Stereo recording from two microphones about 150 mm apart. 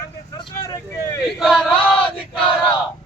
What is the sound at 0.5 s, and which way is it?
Vehicle, 20° left (ahead or behind).